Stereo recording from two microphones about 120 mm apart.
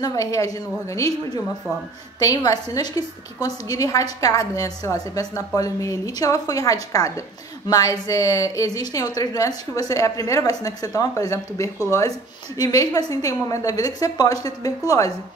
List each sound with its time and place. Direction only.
0.0 s a woman's voice: 30° left (ahead or behind)